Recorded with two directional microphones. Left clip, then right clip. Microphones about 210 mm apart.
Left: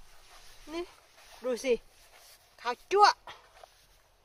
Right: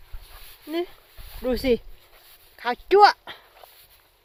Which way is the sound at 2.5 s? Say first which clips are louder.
Right 9 dB; 40° right (ahead or behind).